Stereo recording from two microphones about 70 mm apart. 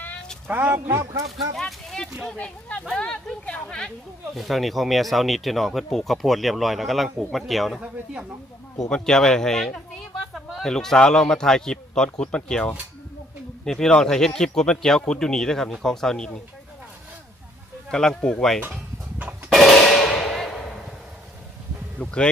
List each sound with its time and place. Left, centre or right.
0.4 s speech: right
1.6 s a man's voice: centre
4.4 s speech: centre
7.8 s speech: centre
8.9 s a man's voice: centre
17.8 s a man's voice: centre
19.5 s a sound: centre
21.9 s a man's voice: centre